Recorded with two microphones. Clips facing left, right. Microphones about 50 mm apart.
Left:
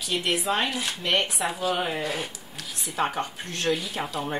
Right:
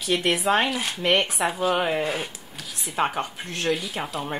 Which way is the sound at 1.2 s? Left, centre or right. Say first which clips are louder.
Right 3 dB; right.